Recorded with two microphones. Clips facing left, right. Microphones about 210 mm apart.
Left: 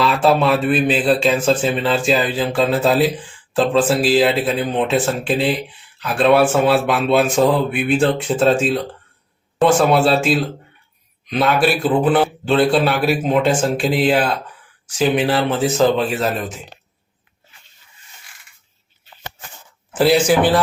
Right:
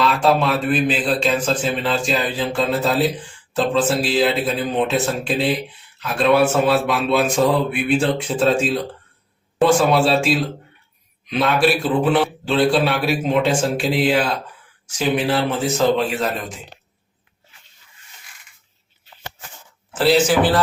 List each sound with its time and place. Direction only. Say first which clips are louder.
0.0 s a man's voice: left 2 dB; 5° left (ahead or behind)